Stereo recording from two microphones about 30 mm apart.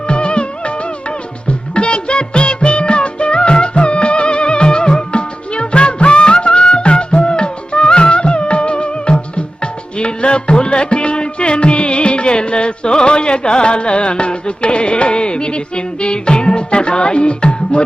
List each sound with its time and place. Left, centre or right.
0.1 s music of bollywood: left
1.5 s music: left